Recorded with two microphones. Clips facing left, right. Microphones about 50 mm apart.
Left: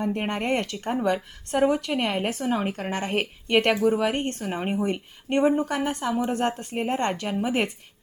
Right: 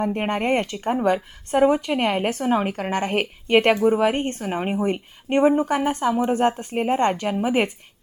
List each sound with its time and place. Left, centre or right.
0.0 s speech: right
6.1 s speech: centre